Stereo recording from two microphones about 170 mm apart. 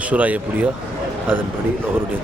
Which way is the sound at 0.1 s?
10° right (ahead or behind).